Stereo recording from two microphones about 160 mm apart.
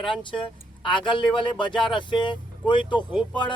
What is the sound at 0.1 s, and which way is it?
Speech, 30° left (ahead or behind).